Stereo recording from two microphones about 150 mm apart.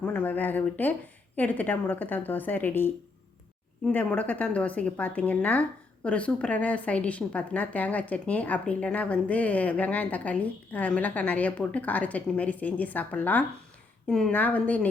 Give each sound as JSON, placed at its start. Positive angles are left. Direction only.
{"t": 0.0, "sound": "a woman's voice", "side_deg": 10}